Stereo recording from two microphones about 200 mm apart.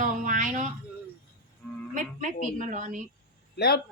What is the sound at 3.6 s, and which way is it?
Speech, 55° left (ahead or behind).